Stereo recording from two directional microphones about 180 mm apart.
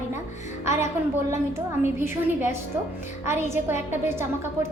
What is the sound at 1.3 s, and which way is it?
A woman's voice, 15° right (ahead or behind).